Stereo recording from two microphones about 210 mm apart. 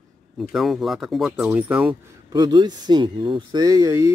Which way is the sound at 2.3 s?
20° right (ahead or behind).